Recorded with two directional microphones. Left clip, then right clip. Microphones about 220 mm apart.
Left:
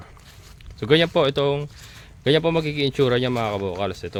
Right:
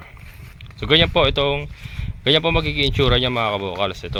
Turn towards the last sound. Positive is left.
turn(degrees=20)  # may be behind; listen again after turning